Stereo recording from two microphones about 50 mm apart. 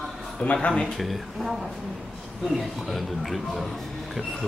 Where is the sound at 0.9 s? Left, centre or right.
Centre.